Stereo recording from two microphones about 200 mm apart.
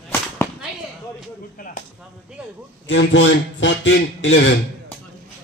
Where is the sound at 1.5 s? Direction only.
45° left (ahead or behind).